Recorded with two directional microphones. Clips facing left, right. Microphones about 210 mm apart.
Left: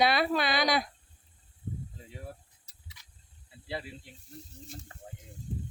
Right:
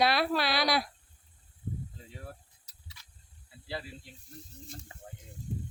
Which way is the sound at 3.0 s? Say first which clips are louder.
Right 1 dB; 15° left (ahead or behind).